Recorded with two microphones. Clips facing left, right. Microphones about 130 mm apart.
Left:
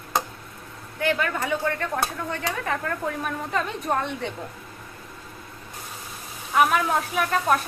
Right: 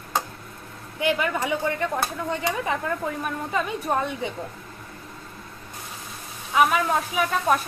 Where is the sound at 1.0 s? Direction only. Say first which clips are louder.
Right 1 dB; 10° right (ahead or behind).